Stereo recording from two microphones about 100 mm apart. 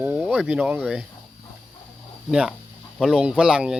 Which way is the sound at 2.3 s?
5° right (ahead or behind).